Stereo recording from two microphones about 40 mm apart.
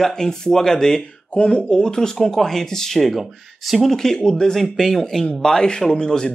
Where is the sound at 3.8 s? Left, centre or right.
Centre.